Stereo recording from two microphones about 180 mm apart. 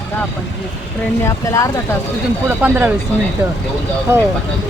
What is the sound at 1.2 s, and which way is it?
Speech, 15° left (ahead or behind).